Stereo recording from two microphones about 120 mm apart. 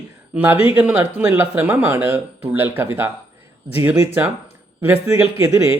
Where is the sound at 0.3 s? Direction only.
15° right (ahead or behind).